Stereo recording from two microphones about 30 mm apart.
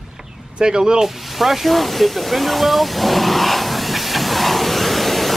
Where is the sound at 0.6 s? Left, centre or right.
Right.